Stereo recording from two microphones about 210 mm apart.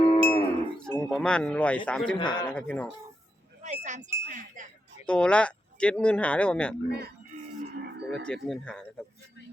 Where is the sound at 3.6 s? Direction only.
35° right (ahead or behind).